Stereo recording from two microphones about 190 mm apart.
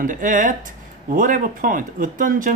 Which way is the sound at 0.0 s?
45° right (ahead or behind).